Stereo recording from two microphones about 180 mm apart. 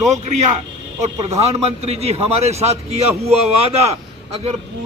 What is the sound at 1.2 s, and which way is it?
A man's voice, 35° right (ahead or behind).